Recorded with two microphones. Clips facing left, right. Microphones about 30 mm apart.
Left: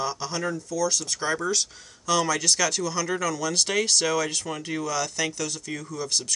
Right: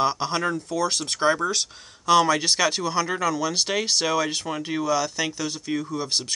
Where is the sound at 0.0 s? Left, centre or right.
Right.